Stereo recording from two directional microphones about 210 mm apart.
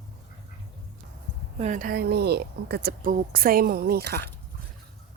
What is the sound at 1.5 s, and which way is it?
A woman's voice, 35° right (ahead or behind).